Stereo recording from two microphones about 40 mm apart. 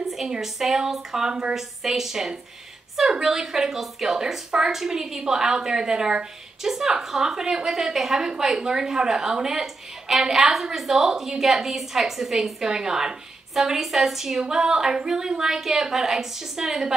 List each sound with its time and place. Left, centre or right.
0.0 s a woman's voice: centre